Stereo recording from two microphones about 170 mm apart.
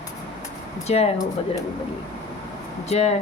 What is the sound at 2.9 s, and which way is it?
Speech, 40° left (ahead or behind).